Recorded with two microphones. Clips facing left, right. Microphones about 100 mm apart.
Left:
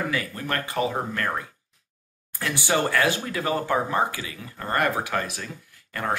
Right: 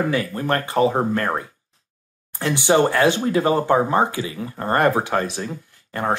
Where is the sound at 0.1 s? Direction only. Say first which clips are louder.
Right 7 dB; 30° right (ahead or behind).